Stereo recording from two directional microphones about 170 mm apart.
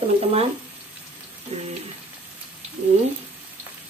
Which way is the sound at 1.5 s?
40° right (ahead or behind).